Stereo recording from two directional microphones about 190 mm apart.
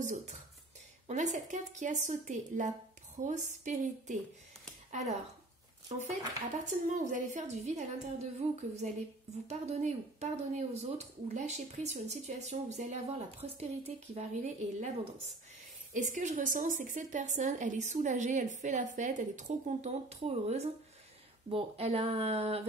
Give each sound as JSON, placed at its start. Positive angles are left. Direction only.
{"t": 0.0, "sound": "speech", "side_deg": -40}
{"t": 5.9, "sound": "speech", "side_deg": -40}
{"t": 15.9, "sound": "speech", "side_deg": -40}